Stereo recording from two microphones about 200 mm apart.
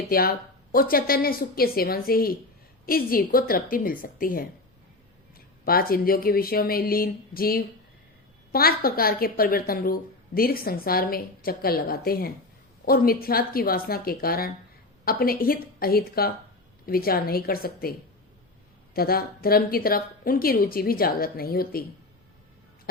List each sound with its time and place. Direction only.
0.1 s a woman's voice: 50° left (ahead or behind)
5.6 s a woman's voice: 45° left (ahead or behind)
18.9 s a woman's voice: 50° left (ahead or behind)